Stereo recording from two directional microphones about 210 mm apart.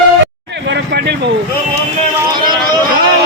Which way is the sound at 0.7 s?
50° right (ahead or behind).